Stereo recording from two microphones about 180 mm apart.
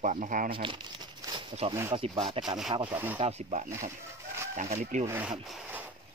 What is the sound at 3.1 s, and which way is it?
Speech, 35° right (ahead or behind).